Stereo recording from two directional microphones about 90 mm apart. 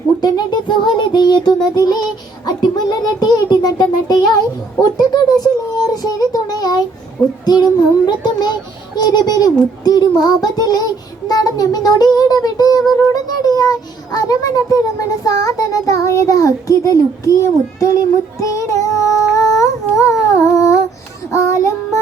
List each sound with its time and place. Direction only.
0.2 s music: 50° left (ahead or behind)
7.4 s child singing: 50° left (ahead or behind)
13.2 s a sound: 45° left (ahead or behind)
21.3 s child singing: 35° left (ahead or behind)